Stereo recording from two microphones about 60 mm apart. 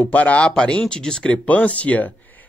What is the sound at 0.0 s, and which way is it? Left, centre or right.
Speech, left.